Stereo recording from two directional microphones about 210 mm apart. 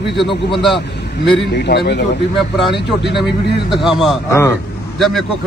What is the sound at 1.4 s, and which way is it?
Speech, 55° left (ahead or behind).